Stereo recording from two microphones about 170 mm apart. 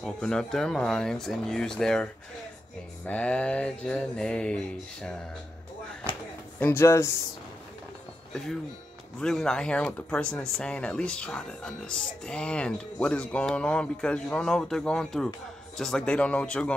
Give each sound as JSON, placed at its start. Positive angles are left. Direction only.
{"t": 0.0, "sound": "speech", "side_deg": 5}
{"t": 3.1, "sound": "speech", "side_deg": 5}
{"t": 6.6, "sound": "speech", "side_deg": 15}
{"t": 9.2, "sound": "speech", "side_deg": 5}